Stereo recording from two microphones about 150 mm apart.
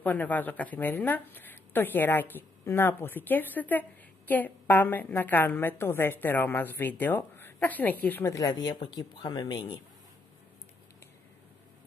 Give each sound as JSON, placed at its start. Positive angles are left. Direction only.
{"t": 0.0, "sound": "a woman's voice", "side_deg": 10}